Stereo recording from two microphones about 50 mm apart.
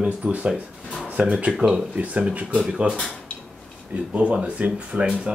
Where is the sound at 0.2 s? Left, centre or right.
Right.